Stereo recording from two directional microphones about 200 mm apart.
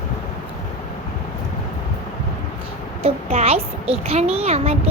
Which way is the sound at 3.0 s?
30° right (ahead or behind).